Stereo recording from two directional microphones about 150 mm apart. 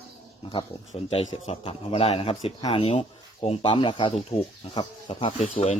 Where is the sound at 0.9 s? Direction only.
45° left (ahead or behind).